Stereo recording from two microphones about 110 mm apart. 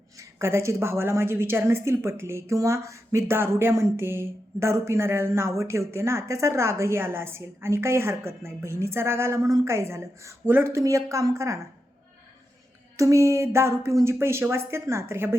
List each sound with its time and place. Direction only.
0.2 s a woman's voice: 25° right (ahead or behind)
13.0 s a woman's voice: 30° right (ahead or behind)